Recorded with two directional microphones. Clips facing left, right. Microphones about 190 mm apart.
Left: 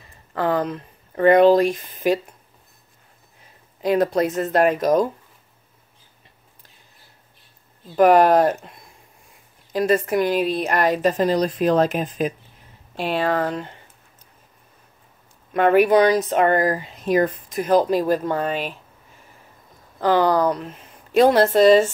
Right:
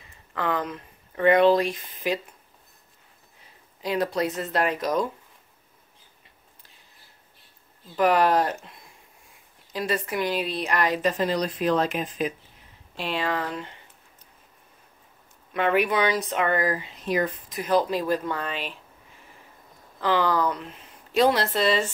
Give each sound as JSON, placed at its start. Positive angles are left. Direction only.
{"t": 0.3, "sound": "speech", "side_deg": 40}
{"t": 3.8, "sound": "speech", "side_deg": 50}
{"t": 7.9, "sound": "speech", "side_deg": 45}
{"t": 15.5, "sound": "speech", "side_deg": 45}
{"t": 20.0, "sound": "speech", "side_deg": 45}